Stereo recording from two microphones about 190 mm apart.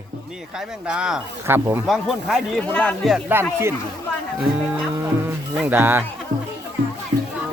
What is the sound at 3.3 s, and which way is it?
Speech, 10° right (ahead or behind).